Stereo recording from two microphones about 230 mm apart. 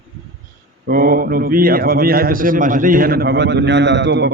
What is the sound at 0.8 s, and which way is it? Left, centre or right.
A man's voice, right.